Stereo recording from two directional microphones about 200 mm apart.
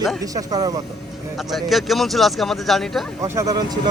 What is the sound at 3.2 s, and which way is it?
Speech, 15° right (ahead or behind).